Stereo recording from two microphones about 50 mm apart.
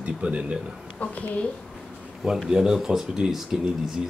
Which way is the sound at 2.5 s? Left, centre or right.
Centre.